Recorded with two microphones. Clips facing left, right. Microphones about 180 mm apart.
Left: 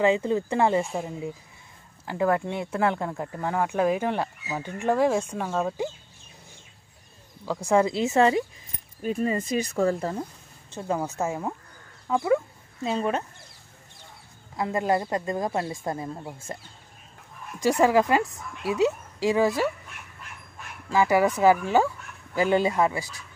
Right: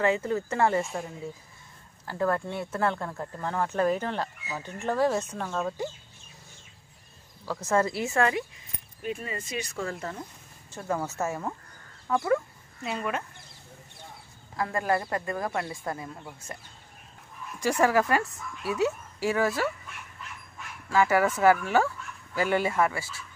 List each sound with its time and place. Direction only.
0.0 s speech: 15° left (ahead or behind)
7.4 s speech: 15° left (ahead or behind)
9.0 s speech: 40° left (ahead or behind)
10.7 s speech: 20° left (ahead or behind)
12.8 s speech: 30° left (ahead or behind)
14.6 s speech: 20° left (ahead or behind)
17.6 s speech: 20° left (ahead or behind)
20.9 s speech: 15° left (ahead or behind)